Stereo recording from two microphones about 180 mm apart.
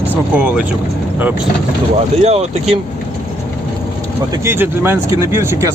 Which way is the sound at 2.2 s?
35° right (ahead or behind).